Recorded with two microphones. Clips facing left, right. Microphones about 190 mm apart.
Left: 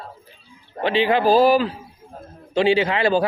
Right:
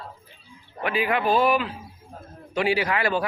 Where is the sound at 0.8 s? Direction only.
30° left (ahead or behind).